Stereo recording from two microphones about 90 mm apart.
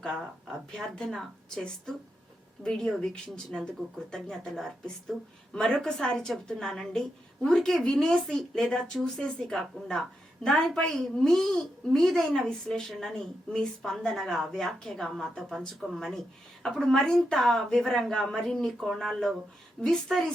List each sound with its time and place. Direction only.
0.8 s a woman's voice: 10° left (ahead or behind)